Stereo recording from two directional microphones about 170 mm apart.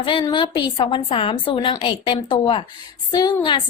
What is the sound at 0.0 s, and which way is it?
A woman's voice, 30° left (ahead or behind).